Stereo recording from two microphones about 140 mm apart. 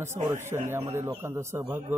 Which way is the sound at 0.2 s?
20° right (ahead or behind).